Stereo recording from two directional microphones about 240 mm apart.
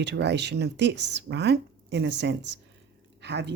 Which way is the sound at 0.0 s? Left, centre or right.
Right.